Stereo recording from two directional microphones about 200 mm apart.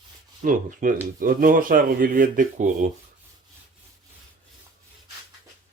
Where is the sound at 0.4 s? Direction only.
40° right (ahead or behind).